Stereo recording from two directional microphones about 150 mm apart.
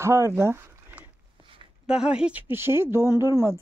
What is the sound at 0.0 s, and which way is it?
Speech, 20° right (ahead or behind).